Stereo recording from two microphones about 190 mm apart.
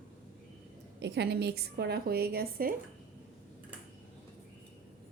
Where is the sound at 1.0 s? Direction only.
60° right (ahead or behind).